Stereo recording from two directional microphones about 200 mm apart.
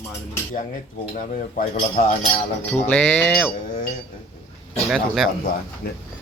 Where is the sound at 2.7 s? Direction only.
10° left (ahead or behind).